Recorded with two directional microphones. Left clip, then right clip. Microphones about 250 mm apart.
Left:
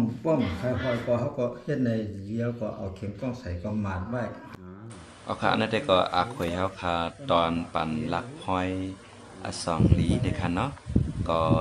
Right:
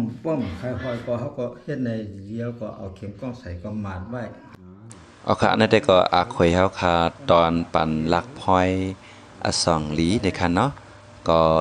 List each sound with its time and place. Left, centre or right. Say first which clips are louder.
0.2 s speech: even; centre
5.2 s speech: right 7 dB; right